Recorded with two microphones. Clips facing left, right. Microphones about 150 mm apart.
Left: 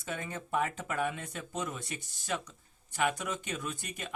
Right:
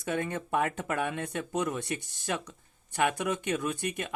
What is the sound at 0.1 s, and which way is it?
Speech, 60° right (ahead or behind).